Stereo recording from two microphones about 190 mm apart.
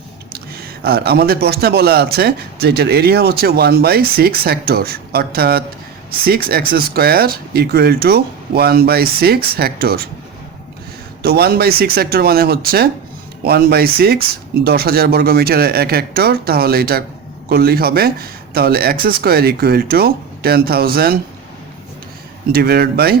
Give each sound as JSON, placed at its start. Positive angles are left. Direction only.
{"t": 0.3, "sound": "speech", "side_deg": -55}
{"t": 11.2, "sound": "speech", "side_deg": -55}
{"t": 22.5, "sound": "speech", "side_deg": -55}